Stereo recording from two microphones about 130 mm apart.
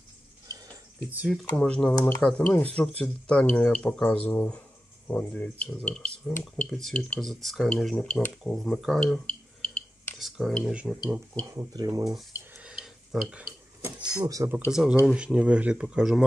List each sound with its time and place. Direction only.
1.1 s speech: 10° right (ahead or behind)
1.6 s speech: 5° left (ahead or behind)
11.3 s speech: 25° right (ahead or behind)
12.5 s a sound: 5° right (ahead or behind)
13.3 s stir: 15° right (ahead or behind)
13.9 s speech: 30° right (ahead or behind)
14.7 s speech: 5° right (ahead or behind)